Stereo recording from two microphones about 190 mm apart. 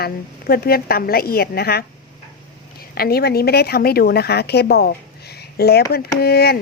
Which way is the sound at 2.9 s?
55° left (ahead or behind).